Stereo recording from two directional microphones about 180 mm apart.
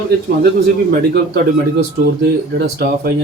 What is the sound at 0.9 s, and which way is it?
A man's voice, 65° right (ahead or behind).